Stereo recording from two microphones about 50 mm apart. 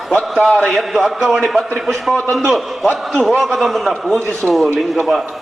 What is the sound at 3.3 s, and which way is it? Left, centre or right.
A man's voice, centre.